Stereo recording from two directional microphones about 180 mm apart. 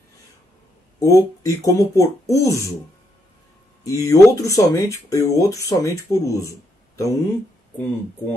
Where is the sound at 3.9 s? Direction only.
20° left (ahead or behind).